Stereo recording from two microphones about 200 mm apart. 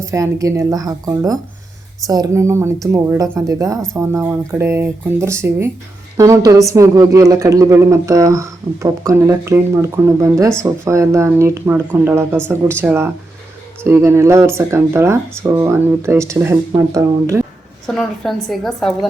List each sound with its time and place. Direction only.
0.0 s speech: 15° right (ahead or behind)
17.8 s a woman's voice: 5° left (ahead or behind)